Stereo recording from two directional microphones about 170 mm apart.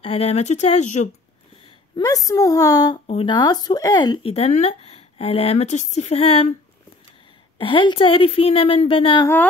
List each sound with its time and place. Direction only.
0.0 s speech: 35° left (ahead or behind)
2.0 s a woman's voice: 20° left (ahead or behind); by 6.5 s 35° left (ahead or behind)
7.5 s speech: 30° left (ahead or behind)
9.2 s speech: 15° left (ahead or behind)